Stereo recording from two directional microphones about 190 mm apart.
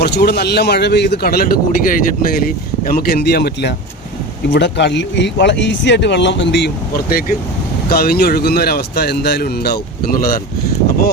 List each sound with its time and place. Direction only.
0.0 s a man's voice: 60° left (ahead or behind)